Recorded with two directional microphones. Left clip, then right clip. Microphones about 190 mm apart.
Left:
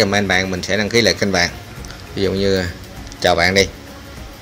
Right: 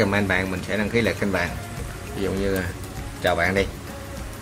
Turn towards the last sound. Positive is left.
turn(degrees=35)  # may be behind; listen again after turning